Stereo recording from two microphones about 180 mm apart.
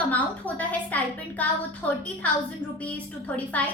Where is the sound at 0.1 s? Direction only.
10° left (ahead or behind).